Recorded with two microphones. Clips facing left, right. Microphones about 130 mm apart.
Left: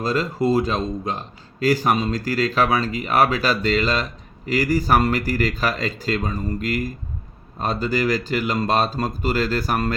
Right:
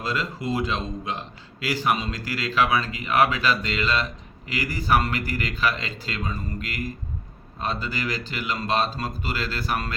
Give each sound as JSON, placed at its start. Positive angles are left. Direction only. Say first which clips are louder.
{"t": 0.0, "sound": "a man's voice", "louder": "left 7 dB", "side_deg": 40}